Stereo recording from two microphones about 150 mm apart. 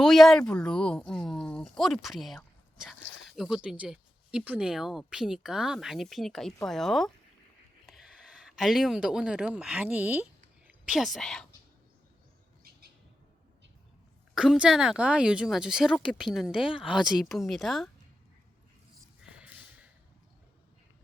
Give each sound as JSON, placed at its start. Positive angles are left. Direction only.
{"t": 0.0, "sound": "a woman's voice", "side_deg": 0}
{"t": 12.6, "sound": "bird", "side_deg": -85}
{"t": 14.3, "sound": "speech", "side_deg": -5}
{"t": 19.2, "sound": "snort", "side_deg": -5}